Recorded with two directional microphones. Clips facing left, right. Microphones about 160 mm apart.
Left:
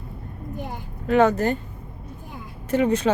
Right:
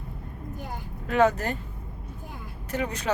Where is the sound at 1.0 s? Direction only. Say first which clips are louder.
Left 4 dB; 35° left (ahead or behind).